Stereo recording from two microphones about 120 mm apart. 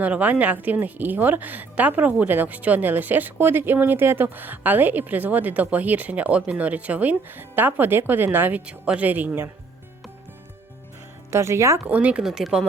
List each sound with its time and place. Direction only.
0.0 s a woman's voice: 10° right (ahead or behind)
11.3 s speech: 25° right (ahead or behind)
11.9 s speech: 10° right (ahead or behind)